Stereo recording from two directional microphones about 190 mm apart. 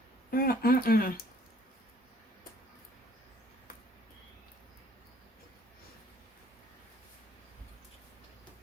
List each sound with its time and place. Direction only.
0.3 s speech: 50° left (ahead or behind)